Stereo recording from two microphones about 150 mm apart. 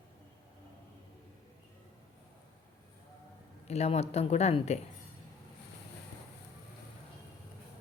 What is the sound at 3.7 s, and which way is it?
Speech, 45° left (ahead or behind).